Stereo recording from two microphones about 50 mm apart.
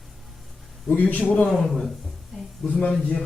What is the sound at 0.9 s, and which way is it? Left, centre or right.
Speech, left.